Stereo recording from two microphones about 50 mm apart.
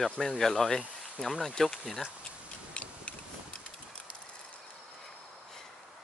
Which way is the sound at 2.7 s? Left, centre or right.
Left.